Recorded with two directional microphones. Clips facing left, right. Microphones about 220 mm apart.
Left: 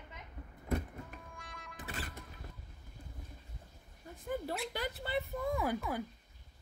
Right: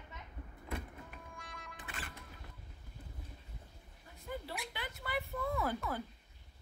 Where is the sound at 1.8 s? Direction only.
40° left (ahead or behind).